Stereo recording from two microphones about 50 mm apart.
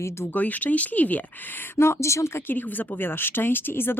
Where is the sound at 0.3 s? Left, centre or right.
Left.